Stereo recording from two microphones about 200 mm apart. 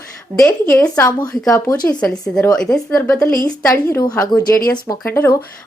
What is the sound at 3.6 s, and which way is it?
A woman's voice, 15° left (ahead or behind).